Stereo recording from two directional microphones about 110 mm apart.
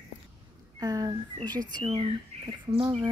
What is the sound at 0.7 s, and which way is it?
Speech, 35° right (ahead or behind).